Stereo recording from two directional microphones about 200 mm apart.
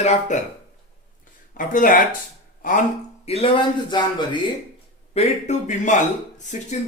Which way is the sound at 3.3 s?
30° left (ahead or behind).